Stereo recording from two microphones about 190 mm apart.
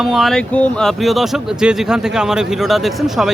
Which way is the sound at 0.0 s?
Centre (ahead or behind).